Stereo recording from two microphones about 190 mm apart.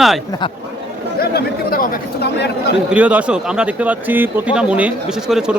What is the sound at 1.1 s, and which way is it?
Speech, 55° left (ahead or behind).